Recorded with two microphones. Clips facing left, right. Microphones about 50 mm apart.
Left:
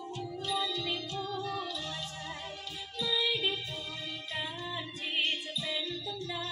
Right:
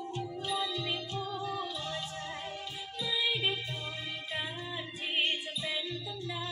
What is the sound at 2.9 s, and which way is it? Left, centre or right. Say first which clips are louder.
Music: left 1 dB; centre.